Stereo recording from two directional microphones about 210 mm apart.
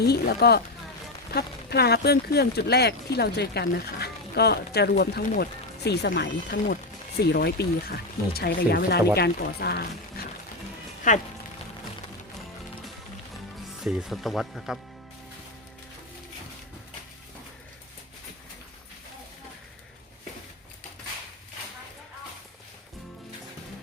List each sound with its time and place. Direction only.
0.0 s speech: 50° left (ahead or behind)
11.1 s speech: 35° left (ahead or behind)
13.8 s speech: centre (ahead or behind)